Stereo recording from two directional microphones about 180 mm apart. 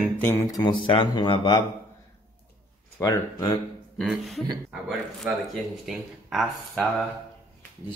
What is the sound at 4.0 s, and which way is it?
A man's voice, centre (ahead or behind).